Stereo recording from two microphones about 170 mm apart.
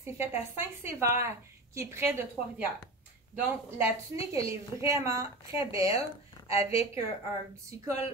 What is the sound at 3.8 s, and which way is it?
A woman's voice, 15° right (ahead or behind).